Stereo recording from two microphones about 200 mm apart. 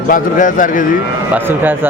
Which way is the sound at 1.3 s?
10° right (ahead or behind).